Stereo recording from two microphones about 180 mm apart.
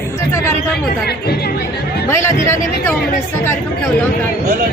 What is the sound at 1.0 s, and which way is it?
Speech, 65° left (ahead or behind).